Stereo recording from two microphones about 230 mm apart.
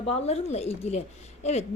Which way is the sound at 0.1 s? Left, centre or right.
Left.